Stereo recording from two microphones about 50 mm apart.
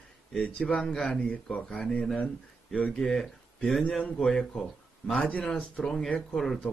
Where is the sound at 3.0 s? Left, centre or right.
Centre.